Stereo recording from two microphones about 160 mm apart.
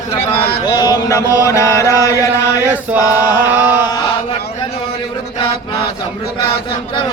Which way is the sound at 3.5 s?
10° right (ahead or behind).